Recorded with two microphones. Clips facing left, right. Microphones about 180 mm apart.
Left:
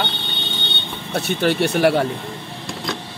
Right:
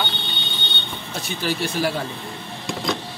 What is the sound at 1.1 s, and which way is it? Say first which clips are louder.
Speech: left 7 dB; 65° left (ahead or behind).